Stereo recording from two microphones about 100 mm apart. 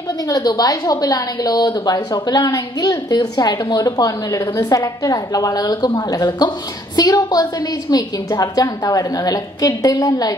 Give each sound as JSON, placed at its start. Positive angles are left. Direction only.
{"t": 0.3, "sound": "a woman's voice", "side_deg": 40}